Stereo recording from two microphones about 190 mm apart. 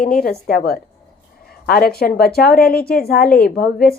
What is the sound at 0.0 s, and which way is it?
Speech, 50° left (ahead or behind).